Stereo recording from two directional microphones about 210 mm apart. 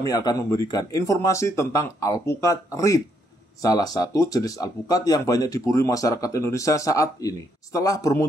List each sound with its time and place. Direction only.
0.0 s speech: 20° left (ahead or behind)